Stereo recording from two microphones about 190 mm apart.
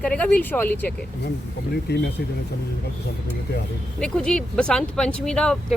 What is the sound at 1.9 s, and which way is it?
Speech, 60° left (ahead or behind).